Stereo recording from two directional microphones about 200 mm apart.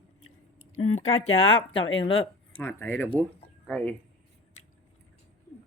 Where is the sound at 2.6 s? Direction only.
10° left (ahead or behind).